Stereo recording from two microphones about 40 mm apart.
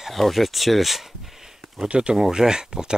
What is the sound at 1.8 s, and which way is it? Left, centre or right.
Speech, right.